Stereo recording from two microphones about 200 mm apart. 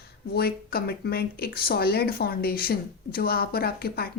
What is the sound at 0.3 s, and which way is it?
Speech, 50° left (ahead or behind).